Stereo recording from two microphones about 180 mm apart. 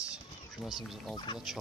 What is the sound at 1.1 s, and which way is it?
Speech, 25° left (ahead or behind).